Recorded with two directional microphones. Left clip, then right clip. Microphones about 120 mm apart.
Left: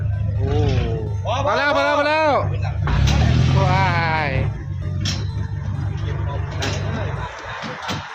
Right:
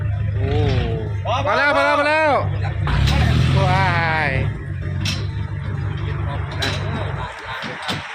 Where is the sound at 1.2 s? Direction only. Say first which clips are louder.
Right 1 dB; 55° left (ahead or behind).